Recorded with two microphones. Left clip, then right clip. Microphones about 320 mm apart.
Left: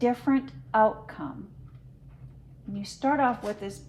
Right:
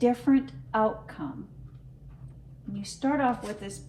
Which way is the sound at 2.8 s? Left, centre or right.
Left.